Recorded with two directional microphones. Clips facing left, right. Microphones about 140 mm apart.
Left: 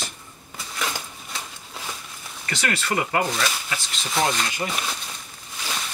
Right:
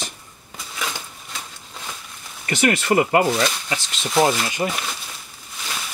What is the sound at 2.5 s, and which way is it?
Speech, 20° right (ahead or behind).